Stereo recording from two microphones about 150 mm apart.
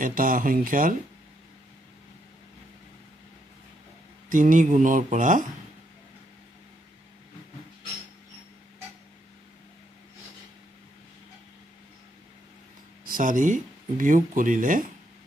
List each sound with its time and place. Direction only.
0.0 s speech: 65° right (ahead or behind)
4.3 s speech: 60° right (ahead or behind)
13.0 s speech: 65° right (ahead or behind)